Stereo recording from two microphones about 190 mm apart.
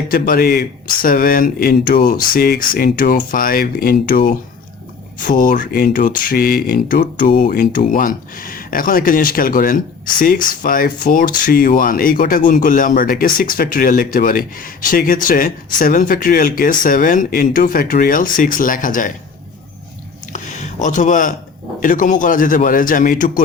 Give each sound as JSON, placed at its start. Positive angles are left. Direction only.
{"t": 0.1, "sound": "speech", "side_deg": 50}
{"t": 20.3, "sound": "a sound", "side_deg": 40}
{"t": 21.8, "sound": "speech", "side_deg": 45}